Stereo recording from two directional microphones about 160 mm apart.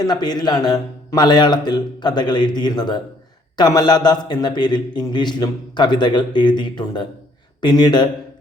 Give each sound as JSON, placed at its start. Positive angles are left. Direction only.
{"t": 0.0, "sound": "a man's voice", "side_deg": 25}